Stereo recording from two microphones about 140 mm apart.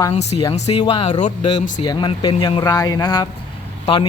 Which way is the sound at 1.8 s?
35° left (ahead or behind).